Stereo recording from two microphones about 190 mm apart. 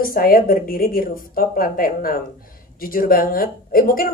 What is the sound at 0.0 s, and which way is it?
Speech, 50° left (ahead or behind).